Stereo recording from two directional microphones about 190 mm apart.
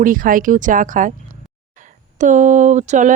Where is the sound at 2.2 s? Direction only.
40° right (ahead or behind).